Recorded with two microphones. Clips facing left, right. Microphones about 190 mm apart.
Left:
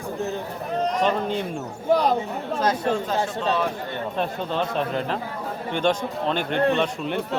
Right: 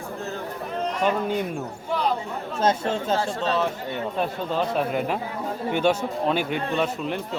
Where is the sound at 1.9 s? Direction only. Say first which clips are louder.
Left 6 dB; 40° left (ahead or behind).